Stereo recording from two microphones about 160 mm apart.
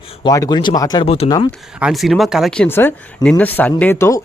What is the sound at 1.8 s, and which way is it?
Speech, centre (ahead or behind).